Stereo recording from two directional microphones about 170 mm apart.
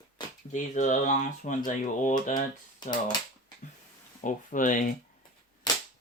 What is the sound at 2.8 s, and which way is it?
Speech, 25° left (ahead or behind).